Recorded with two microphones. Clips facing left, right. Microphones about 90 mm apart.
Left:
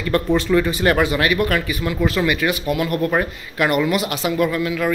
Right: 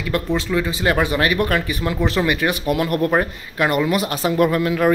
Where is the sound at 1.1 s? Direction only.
30° right (ahead or behind).